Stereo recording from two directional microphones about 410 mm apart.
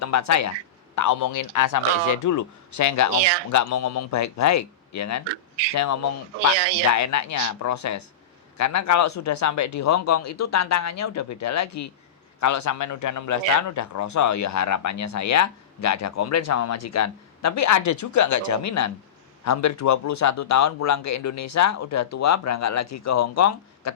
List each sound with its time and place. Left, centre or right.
0.0 s speech: left
3.2 s speech: right
3.5 s speech: left
6.5 s speech: right
6.9 s speech: left